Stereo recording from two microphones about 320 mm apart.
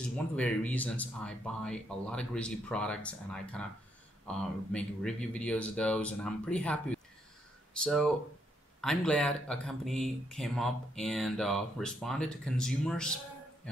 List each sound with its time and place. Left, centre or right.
0.4 s speech: centre